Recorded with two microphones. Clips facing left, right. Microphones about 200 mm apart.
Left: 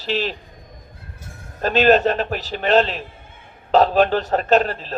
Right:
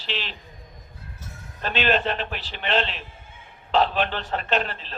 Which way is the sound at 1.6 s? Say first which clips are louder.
Left 9 dB; 40° left (ahead or behind).